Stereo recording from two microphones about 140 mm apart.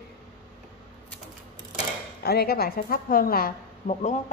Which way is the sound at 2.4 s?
90° left.